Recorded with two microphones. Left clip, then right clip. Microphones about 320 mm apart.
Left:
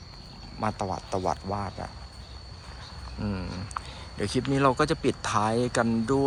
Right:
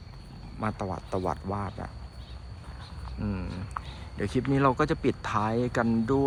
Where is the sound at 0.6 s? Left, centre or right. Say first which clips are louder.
Left 3 dB; centre.